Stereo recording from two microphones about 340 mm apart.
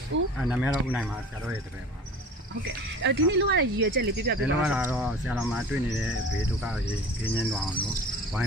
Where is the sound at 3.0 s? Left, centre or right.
Right.